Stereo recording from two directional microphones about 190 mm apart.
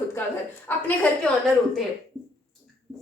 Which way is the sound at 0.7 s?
10° left (ahead or behind).